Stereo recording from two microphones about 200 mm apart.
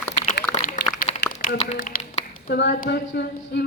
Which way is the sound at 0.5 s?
40° left (ahead or behind).